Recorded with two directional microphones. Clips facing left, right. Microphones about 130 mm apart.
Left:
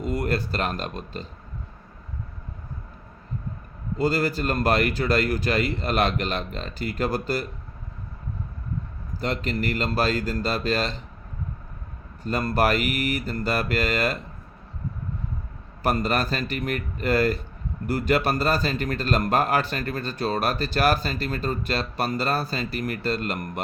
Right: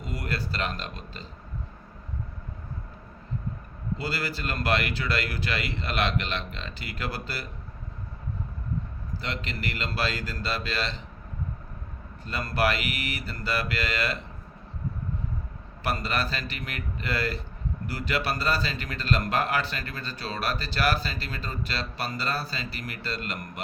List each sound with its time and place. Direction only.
0.0 s a man's voice: 50° left (ahead or behind)
3.9 s a man's voice: 45° left (ahead or behind)
9.2 s a man's voice: 45° left (ahead or behind)
12.2 s a man's voice: 45° left (ahead or behind)
15.8 s a man's voice: 45° left (ahead or behind)